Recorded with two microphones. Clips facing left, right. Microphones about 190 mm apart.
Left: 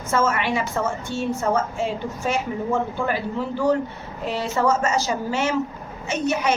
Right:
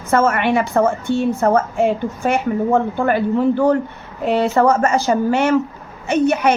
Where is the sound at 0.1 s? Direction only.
60° right (ahead or behind).